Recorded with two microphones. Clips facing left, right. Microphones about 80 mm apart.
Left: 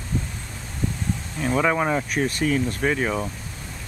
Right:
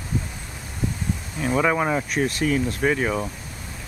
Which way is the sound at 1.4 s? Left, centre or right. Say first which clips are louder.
Even; centre.